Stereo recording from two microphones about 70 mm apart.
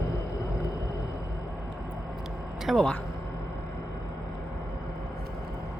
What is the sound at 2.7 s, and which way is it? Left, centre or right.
Speech, centre.